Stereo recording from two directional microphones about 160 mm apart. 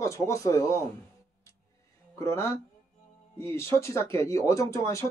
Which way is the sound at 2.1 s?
15° left (ahead or behind).